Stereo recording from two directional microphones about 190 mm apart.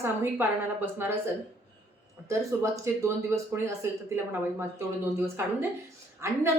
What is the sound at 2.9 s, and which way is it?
A woman's voice, 15° right (ahead or behind).